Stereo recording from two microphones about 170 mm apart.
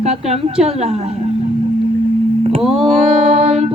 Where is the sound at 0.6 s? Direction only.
35° right (ahead or behind).